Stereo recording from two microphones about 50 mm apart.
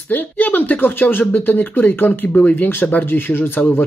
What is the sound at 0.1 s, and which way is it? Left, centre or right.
Speech, left.